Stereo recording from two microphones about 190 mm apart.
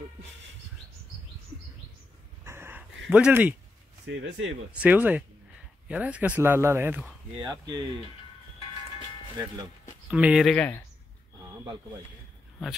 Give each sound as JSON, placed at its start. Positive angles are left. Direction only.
{"t": 2.4, "sound": "wheeze", "side_deg": -15}
{"t": 3.1, "sound": "speech", "side_deg": -5}
{"t": 4.0, "sound": "speech", "side_deg": -75}
{"t": 4.7, "sound": "speech", "side_deg": -10}
{"t": 10.0, "sound": "speech", "side_deg": -5}